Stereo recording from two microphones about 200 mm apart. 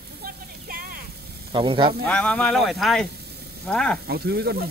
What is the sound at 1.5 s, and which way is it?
Speech, 25° right (ahead or behind).